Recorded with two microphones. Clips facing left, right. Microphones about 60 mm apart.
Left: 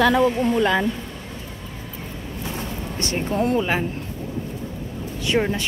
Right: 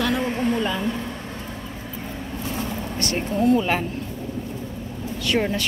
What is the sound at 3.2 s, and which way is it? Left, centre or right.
Speech, left.